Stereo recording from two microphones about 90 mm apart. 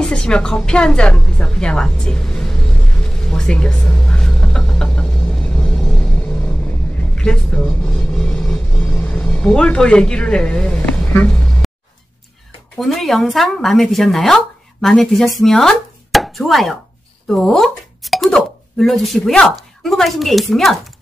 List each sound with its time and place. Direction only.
0.0 s music: 10° left (ahead or behind)
12.7 s speech: centre (ahead or behind)